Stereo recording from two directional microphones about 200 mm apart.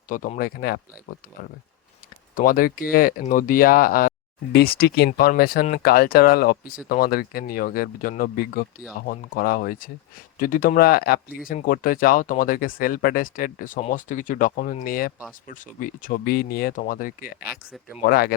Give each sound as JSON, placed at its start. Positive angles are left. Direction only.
{"t": 0.1, "sound": "speech", "side_deg": 40}
{"t": 2.3, "sound": "speech", "side_deg": 45}